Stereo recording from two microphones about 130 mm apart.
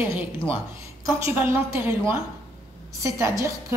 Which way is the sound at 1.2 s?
20° right (ahead or behind).